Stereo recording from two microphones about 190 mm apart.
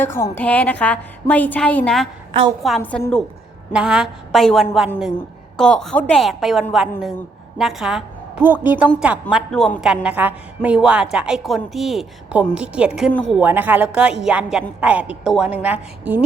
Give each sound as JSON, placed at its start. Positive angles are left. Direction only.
{"t": 0.0, "sound": "a woman's voice", "side_deg": 10}
{"t": 2.3, "sound": "a woman's voice", "side_deg": -25}
{"t": 2.6, "sound": "a woman's voice", "side_deg": 5}